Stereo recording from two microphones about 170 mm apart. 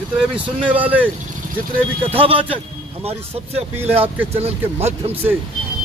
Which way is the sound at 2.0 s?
30° right (ahead or behind).